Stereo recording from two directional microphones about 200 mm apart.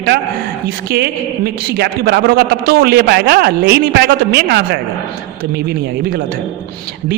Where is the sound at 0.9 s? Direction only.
55° right (ahead or behind).